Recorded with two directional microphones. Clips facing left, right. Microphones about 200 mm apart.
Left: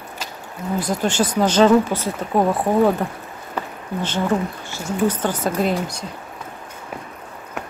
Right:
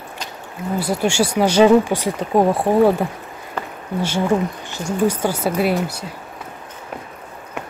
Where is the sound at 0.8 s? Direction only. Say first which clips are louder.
Right 2 dB; 10° right (ahead or behind).